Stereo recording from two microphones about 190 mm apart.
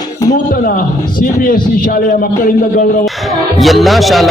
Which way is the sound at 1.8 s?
45° left (ahead or behind).